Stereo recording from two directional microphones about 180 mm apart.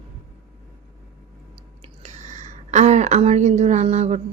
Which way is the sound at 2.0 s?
40° right (ahead or behind).